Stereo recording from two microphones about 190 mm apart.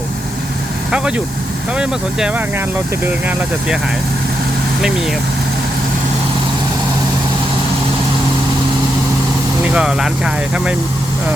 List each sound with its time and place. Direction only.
0.9 s speech: 5° right (ahead or behind)
9.6 s speech: 5° right (ahead or behind)